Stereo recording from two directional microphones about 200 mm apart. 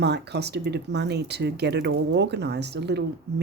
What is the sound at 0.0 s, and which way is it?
Speech, 55° right (ahead or behind).